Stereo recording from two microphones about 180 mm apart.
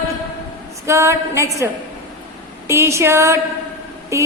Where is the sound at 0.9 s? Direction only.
15° right (ahead or behind).